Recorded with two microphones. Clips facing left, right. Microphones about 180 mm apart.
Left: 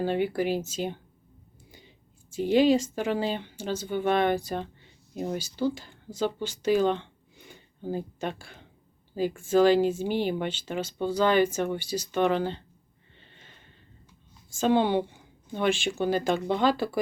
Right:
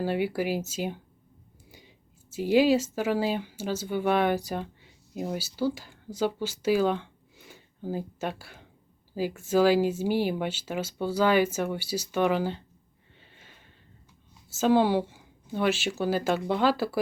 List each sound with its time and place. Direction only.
0.0 s speech: 5° right (ahead or behind)
2.3 s speech: 5° right (ahead or behind)
13.1 s a sound: 5° right (ahead or behind)
14.5 s a woman's voice: 5° right (ahead or behind)